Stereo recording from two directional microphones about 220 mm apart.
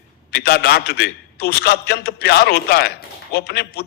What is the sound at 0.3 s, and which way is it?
A man's voice, 45° left (ahead or behind).